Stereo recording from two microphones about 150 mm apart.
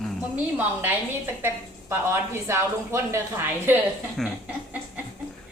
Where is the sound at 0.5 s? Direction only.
10° right (ahead or behind).